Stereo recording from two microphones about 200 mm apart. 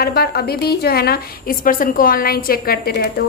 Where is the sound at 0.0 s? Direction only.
50° left (ahead or behind).